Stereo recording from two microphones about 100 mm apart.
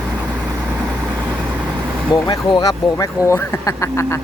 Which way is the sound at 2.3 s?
40° left (ahead or behind).